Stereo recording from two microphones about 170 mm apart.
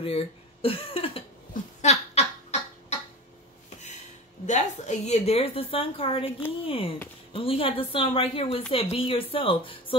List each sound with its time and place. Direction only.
0.0 s speech: 35° left (ahead or behind)
1.5 s a sound: 40° left (ahead or behind)
4.5 s a woman's voice: 40° left (ahead or behind)